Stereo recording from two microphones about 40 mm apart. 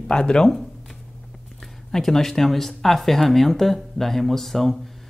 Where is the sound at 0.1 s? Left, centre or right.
Left.